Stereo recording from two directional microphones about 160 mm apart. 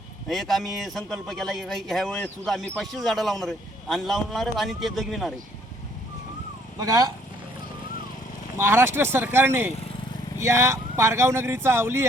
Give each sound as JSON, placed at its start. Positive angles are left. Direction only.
{"t": 0.3, "sound": "speech", "side_deg": 0}
{"t": 6.7, "sound": "speech", "side_deg": -25}
{"t": 8.5, "sound": "speech", "side_deg": -15}